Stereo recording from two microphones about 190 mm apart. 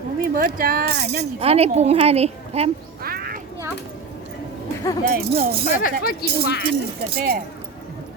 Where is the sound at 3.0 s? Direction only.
50° right (ahead or behind).